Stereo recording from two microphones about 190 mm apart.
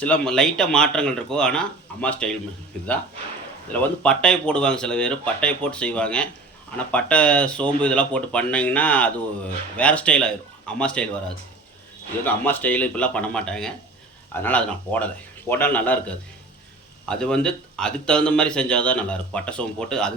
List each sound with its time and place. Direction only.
0.0 s speech: 5° left (ahead or behind)
3.7 s speech: 5° left (ahead or behind)
12.2 s speech: 10° left (ahead or behind)